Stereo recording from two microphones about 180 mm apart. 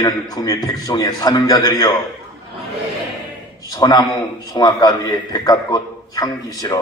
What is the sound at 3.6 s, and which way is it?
A man's voice, 20° left (ahead or behind).